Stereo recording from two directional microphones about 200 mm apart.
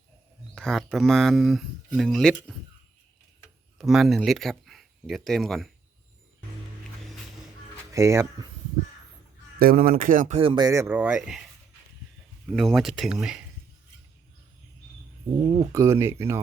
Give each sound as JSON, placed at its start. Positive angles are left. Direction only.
{"t": 0.5, "sound": "speech", "side_deg": 5}
{"t": 3.8, "sound": "speech", "side_deg": 0}
{"t": 7.9, "sound": "speech", "side_deg": -15}
{"t": 9.6, "sound": "speech", "side_deg": -50}
{"t": 12.5, "sound": "speech", "side_deg": 0}
{"t": 15.7, "sound": "speech", "side_deg": -15}